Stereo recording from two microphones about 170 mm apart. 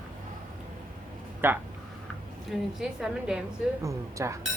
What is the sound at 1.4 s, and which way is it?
Speech, 10° right (ahead or behind).